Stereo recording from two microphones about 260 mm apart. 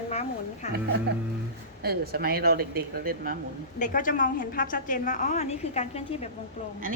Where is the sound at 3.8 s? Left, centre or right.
Left.